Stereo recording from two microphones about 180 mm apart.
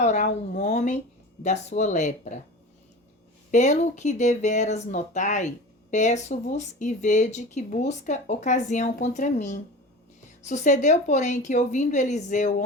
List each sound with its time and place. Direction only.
0.0 s speech: 40° left (ahead or behind)
3.5 s a woman's voice: 40° left (ahead or behind)